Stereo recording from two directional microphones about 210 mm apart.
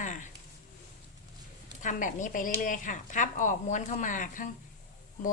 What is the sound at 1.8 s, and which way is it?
Speech, 35° left (ahead or behind).